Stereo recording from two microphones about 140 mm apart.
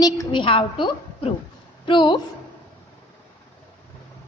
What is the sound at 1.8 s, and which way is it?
Speech, 35° left (ahead or behind).